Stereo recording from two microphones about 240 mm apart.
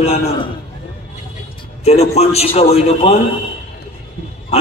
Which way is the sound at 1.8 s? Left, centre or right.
Left.